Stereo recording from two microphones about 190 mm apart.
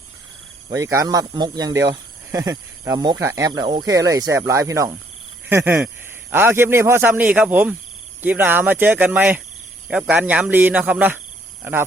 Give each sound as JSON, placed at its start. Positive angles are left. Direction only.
{"t": 0.7, "sound": "speech", "side_deg": -15}